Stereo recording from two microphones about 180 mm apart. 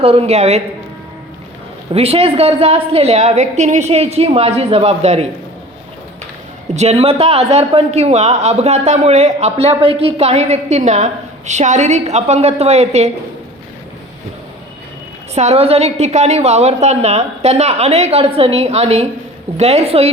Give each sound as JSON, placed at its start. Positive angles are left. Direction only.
{"t": 0.0, "sound": "a man's voice", "side_deg": -35}
{"t": 1.9, "sound": "a man's voice", "side_deg": -35}
{"t": 6.7, "sound": "a man's voice", "side_deg": -35}
{"t": 15.4, "sound": "a man's voice", "side_deg": -35}